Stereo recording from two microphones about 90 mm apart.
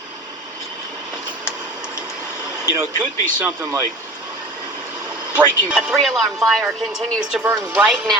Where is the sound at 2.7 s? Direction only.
45° right (ahead or behind).